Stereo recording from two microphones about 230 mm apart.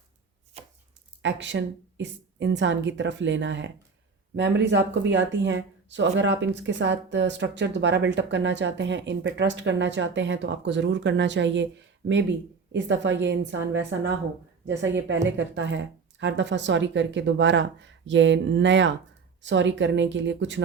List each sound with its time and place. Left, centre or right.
0.6 s chopping: right
1.2 s speech: right